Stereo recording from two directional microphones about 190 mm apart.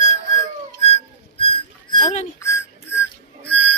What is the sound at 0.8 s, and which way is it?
Whistling, 30° left (ahead or behind).